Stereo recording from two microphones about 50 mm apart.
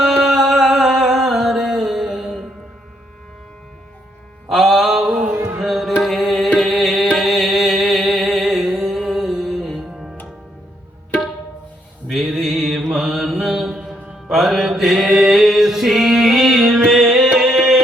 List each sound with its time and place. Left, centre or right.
0.0 s music: centre
4.4 s mantra: centre
5.0 s a sound: centre
5.6 s music: centre
12.0 s music: centre
12.9 s mantra: centre
17.3 s carnatic music: centre